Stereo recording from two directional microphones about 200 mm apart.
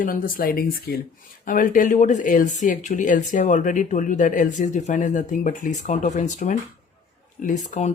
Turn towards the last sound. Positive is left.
turn(degrees=35)  # may be behind; listen again after turning